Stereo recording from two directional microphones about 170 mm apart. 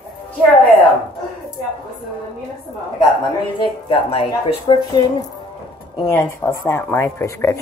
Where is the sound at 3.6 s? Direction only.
35° left (ahead or behind).